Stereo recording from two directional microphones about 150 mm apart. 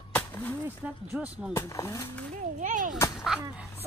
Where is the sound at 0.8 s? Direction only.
10° right (ahead or behind).